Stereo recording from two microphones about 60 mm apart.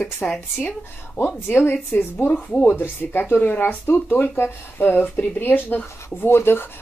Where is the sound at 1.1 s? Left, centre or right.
Left.